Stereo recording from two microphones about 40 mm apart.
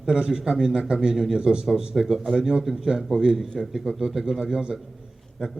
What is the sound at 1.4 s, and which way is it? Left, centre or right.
Speech, centre.